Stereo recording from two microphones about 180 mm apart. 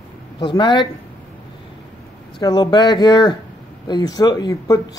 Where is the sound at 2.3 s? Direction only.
25° left (ahead or behind).